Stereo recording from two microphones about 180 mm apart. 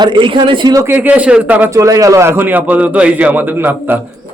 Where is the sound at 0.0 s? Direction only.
25° right (ahead or behind).